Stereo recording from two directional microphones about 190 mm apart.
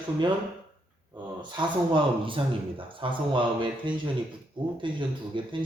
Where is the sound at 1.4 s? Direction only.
25° right (ahead or behind).